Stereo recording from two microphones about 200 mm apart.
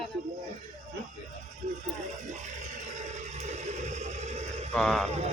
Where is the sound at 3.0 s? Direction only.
35° right (ahead or behind).